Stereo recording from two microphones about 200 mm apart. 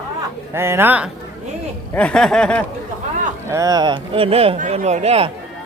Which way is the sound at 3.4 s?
15° right (ahead or behind).